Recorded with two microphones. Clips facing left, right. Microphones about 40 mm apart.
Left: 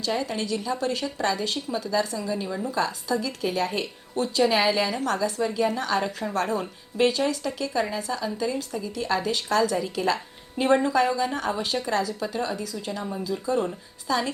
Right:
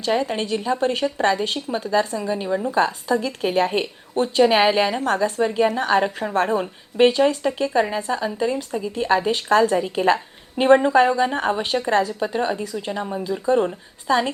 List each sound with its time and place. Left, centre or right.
0.0 s a woman's voice: right